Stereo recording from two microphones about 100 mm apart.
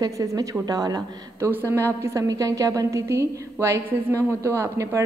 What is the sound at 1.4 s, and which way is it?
A woman's voice, 25° right (ahead or behind).